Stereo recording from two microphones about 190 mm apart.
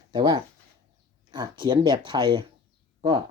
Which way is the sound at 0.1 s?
25° right (ahead or behind).